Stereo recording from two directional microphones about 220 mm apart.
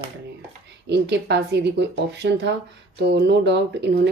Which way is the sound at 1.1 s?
50° right (ahead or behind).